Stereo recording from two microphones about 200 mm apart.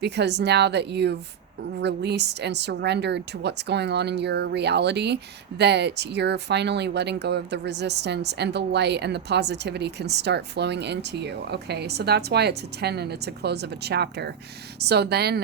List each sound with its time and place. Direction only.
0.0 s speech: 55° right (ahead or behind)